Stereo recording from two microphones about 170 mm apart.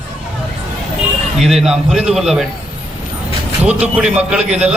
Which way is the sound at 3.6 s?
5° right (ahead or behind).